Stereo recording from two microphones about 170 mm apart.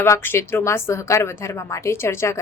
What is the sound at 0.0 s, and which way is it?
Speech, 15° left (ahead or behind).